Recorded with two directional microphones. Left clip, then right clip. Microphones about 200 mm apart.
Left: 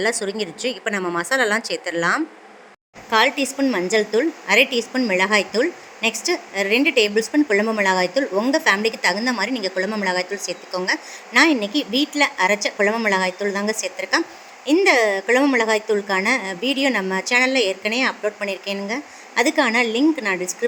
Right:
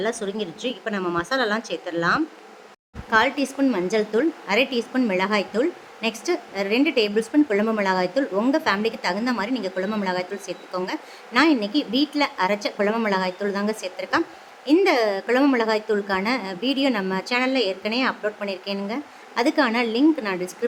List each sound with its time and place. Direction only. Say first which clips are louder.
0.0 s a woman's voice: left 4 dB; 25° left (ahead or behind)